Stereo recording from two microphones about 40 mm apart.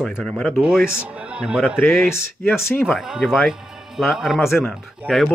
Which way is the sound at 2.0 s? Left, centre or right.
Left.